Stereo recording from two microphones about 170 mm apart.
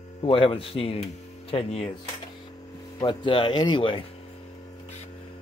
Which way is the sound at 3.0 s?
30° left (ahead or behind).